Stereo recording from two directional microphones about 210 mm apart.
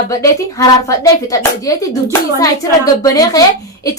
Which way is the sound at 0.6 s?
15° left (ahead or behind).